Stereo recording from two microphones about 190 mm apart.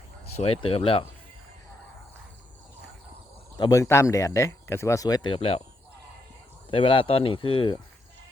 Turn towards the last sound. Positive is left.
turn(degrees=25)  # may be behind; listen again after turning